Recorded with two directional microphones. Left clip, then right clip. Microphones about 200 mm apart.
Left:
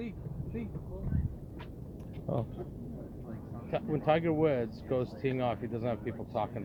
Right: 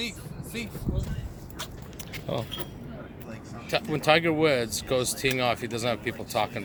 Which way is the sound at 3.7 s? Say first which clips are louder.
Right 7 dB; 20° right (ahead or behind).